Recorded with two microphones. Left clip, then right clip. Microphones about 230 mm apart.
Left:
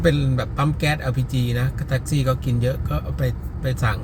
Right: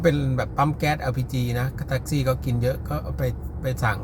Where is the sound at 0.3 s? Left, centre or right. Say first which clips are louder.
Right 1 dB; right.